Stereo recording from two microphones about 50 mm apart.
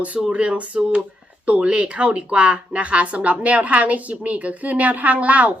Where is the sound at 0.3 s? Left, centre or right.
Right.